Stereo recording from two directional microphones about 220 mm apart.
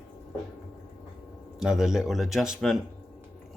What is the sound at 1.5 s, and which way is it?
Speech, centre (ahead or behind).